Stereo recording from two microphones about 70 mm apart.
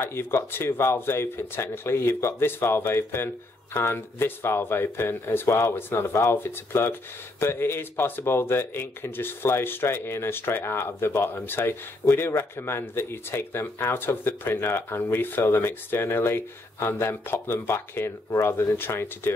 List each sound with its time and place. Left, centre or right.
0.0 s speech: left
5.8 s speech: left